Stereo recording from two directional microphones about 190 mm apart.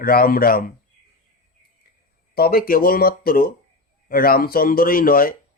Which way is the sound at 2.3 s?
50° left (ahead or behind).